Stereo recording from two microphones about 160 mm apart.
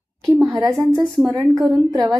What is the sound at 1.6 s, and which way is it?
Speech, 25° right (ahead or behind).